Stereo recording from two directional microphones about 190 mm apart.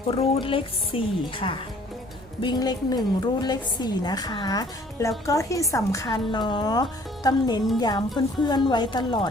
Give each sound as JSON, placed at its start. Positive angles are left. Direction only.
{"t": 0.1, "sound": "a woman's voice", "side_deg": 30}